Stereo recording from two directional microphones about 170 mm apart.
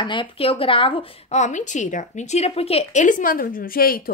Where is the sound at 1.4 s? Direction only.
45° left (ahead or behind).